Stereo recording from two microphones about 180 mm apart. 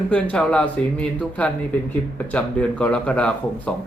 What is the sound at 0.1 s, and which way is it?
A man's voice, 5° left (ahead or behind).